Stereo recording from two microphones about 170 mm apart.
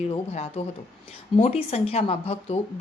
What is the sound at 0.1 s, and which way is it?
A woman's voice, 35° left (ahead or behind).